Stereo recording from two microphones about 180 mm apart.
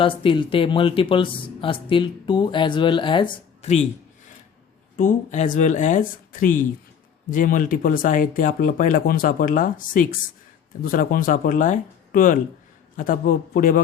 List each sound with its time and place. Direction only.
0.0 s speech: 30° left (ahead or behind)
4.9 s speech: 45° left (ahead or behind)